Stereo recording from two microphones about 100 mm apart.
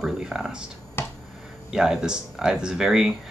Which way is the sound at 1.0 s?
25° left (ahead or behind).